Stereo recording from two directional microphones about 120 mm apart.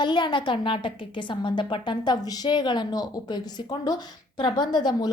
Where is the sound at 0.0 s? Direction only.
40° left (ahead or behind).